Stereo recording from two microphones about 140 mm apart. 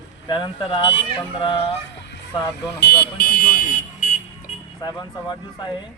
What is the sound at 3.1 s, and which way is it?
Car alarm, 90° left.